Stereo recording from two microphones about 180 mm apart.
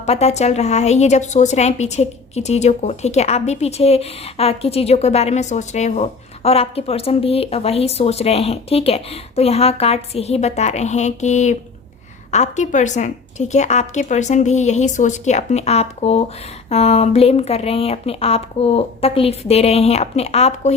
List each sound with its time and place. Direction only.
0.0 s a woman's voice: 35° left (ahead or behind)